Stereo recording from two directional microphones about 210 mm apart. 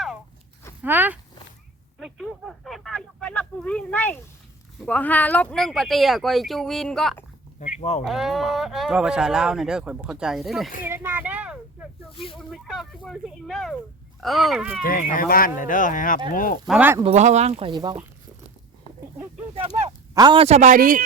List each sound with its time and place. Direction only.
0.8 s speech: 10° right (ahead or behind)
2.0 s a sound: centre (ahead or behind)
4.8 s speech: 5° left (ahead or behind)
7.8 s speech: 30° left (ahead or behind)
8.0 s speech: centre (ahead or behind)
10.8 s a sound: 10° right (ahead or behind)
12.1 s speech: 25° left (ahead or behind)
12.4 s speech: centre (ahead or behind)
14.8 s speech: 40° left (ahead or behind)
16.6 s speech: 5° right (ahead or behind)
17.0 s speech: 30° right (ahead or behind)
19.5 s a man's voice: 30° right (ahead or behind)